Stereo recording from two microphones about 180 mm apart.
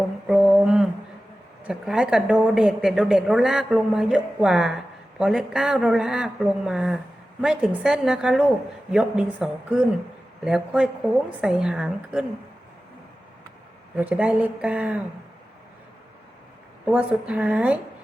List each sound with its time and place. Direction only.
0.3 s mantra: 5° right (ahead or behind)
1.6 s a woman's voice: 5° right (ahead or behind)
13.9 s speech: 5° right (ahead or behind)
16.8 s speech: 10° right (ahead or behind)